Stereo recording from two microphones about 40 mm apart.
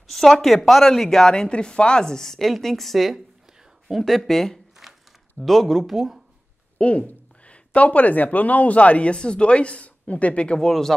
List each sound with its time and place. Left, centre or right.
0.0 s speech: centre
4.8 s a sound: centre
5.4 s speech: centre
6.8 s speech: left
10.6 s speech: centre